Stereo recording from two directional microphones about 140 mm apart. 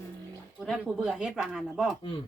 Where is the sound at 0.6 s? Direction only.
5° right (ahead or behind).